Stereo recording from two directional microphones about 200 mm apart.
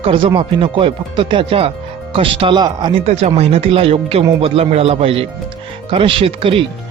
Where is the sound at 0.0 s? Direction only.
25° right (ahead or behind).